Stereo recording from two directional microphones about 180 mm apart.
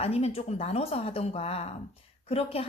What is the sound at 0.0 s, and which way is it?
A woman's voice, 35° left (ahead or behind).